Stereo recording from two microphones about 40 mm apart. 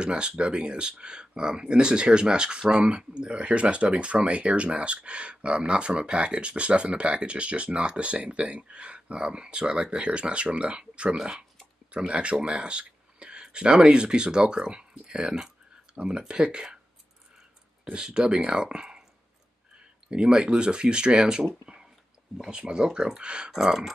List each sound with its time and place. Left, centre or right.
0.0 s speech: right
17.9 s speech: right
20.1 s speech: right
21.7 s a sound: right
22.5 s speech: right
23.5 s speech: centre